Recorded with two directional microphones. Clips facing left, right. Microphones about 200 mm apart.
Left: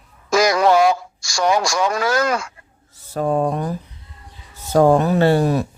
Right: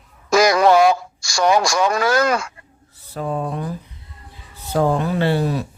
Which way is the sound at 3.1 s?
45° left (ahead or behind).